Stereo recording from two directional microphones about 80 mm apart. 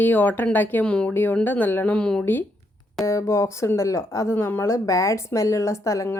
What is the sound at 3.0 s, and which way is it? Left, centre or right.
Speech, left.